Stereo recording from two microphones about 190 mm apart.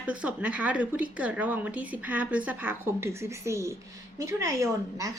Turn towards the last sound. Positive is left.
turn(degrees=-15)  # may be behind; listen again after turning